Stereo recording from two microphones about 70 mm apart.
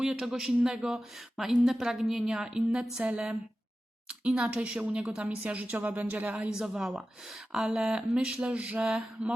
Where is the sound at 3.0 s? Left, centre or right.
Centre.